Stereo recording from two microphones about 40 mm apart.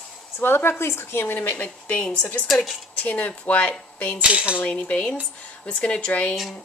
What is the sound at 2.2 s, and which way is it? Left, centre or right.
Speech, left.